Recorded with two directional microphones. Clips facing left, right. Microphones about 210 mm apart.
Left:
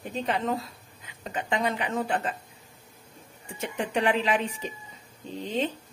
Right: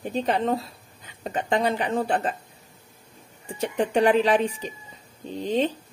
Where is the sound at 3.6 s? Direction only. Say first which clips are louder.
Right 6 dB; 35° right (ahead or behind).